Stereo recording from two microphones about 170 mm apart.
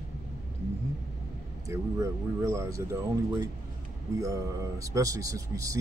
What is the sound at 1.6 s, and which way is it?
A man's voice, 20° right (ahead or behind).